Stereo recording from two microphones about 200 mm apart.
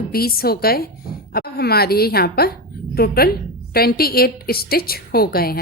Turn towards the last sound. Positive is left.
turn(degrees=50)  # may be behind; listen again after turning